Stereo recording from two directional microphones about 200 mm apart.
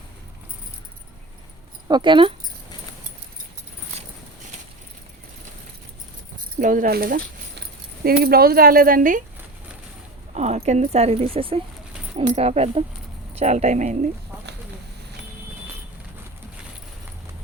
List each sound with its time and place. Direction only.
1.9 s speech: 25° right (ahead or behind)
6.6 s speech: 40° right (ahead or behind)
10.3 s speech: 35° right (ahead or behind)